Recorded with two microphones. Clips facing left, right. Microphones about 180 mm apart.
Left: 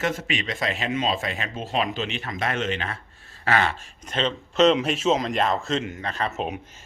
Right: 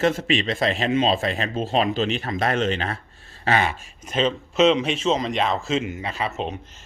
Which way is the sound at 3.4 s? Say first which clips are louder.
Right 1 dB; 20° right (ahead or behind).